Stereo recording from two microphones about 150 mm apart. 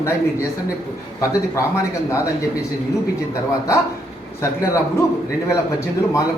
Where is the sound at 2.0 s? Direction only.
20° left (ahead or behind).